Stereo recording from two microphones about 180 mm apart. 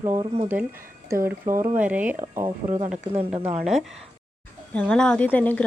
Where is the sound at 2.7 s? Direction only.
45° right (ahead or behind).